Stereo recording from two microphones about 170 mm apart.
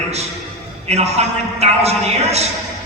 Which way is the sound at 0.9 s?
40° right (ahead or behind).